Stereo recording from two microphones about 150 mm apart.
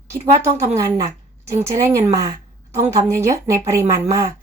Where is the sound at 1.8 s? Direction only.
20° right (ahead or behind).